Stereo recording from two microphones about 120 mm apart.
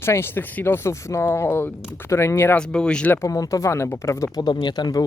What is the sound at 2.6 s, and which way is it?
Speech, 5° left (ahead or behind).